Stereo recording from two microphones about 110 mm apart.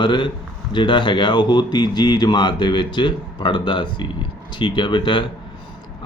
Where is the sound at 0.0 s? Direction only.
45° left (ahead or behind).